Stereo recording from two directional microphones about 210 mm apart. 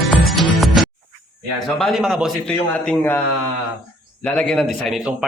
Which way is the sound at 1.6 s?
Centre (ahead or behind).